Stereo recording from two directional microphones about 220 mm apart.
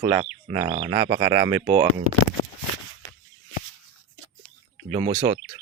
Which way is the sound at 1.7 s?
35° right (ahead or behind).